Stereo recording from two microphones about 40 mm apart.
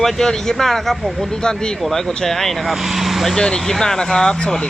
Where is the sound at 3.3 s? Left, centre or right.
Centre.